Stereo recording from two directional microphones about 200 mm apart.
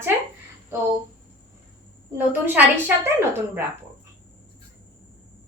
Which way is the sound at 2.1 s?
10° right (ahead or behind).